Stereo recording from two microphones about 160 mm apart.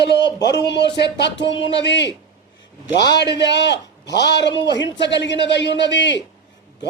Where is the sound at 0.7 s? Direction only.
90° left.